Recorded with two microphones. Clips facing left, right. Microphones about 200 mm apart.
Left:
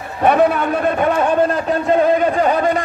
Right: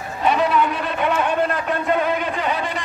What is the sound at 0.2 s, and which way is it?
A man's voice, 55° left (ahead or behind).